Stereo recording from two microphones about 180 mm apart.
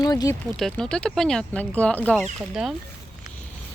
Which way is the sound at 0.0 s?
20° left (ahead or behind).